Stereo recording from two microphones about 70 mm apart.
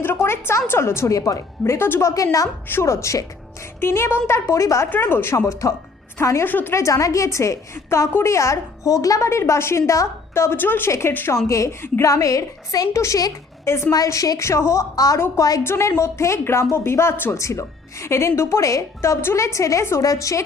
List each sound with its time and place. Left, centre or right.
0.2 s a woman's voice: left
3.8 s a woman's voice: left
4.9 s a woman's voice: left
5.5 s speech: left
6.4 s a woman's voice: left
6.7 s speech: left
9.3 s a woman's voice: left
11.4 s speech: left
12.9 s speech: left
13.9 s speech: left
14.9 s a woman's voice: left
15.6 s a woman's voice: left